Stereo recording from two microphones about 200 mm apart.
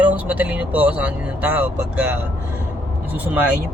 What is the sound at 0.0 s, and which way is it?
Speech, 5° right (ahead or behind).